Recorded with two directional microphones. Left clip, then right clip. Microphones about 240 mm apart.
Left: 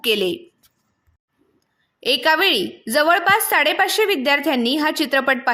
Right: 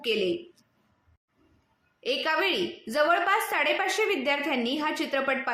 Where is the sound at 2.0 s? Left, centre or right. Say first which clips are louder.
Left 10 dB; left.